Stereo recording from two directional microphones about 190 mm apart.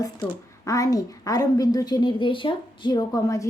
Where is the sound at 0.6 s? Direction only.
15° left (ahead or behind).